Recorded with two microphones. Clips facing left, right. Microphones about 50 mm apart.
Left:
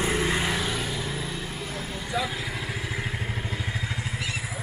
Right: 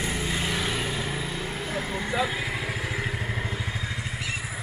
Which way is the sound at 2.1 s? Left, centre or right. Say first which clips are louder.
Right 1 dB; right.